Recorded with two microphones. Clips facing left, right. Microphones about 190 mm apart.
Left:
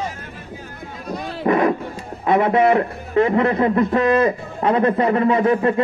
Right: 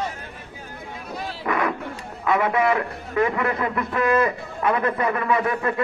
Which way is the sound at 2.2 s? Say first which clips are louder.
Left 5 dB; 30° left (ahead or behind).